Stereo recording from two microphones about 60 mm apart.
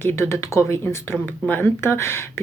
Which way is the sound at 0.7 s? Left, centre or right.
Left.